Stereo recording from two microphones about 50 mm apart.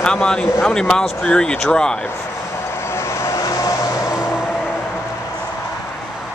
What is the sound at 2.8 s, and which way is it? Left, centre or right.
Vehicle, left.